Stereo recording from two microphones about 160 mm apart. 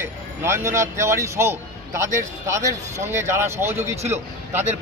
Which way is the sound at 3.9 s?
40° right (ahead or behind).